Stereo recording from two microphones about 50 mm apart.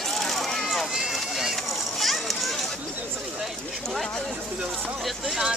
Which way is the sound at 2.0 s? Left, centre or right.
Centre.